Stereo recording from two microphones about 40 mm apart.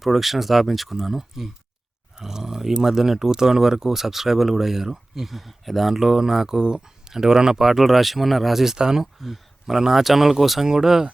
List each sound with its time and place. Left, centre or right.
0.0 s speech: centre
2.1 s a sound: centre
2.7 s speech: centre
7.6 s speech: centre
9.2 s speech: centre